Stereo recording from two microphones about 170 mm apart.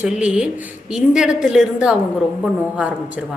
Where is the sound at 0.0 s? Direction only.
5° right (ahead or behind).